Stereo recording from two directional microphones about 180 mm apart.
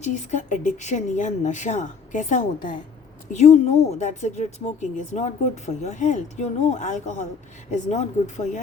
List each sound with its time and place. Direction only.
0.0 s speech: 40° left (ahead or behind)